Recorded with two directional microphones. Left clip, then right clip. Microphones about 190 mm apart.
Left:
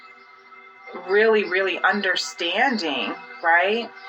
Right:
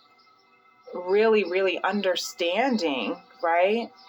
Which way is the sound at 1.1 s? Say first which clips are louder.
Left 3 dB; 10° right (ahead or behind).